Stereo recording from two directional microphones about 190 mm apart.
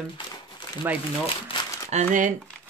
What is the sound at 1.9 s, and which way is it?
Speech, 40° right (ahead or behind).